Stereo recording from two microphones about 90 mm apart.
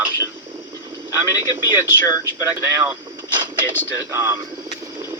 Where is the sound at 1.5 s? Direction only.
25° right (ahead or behind).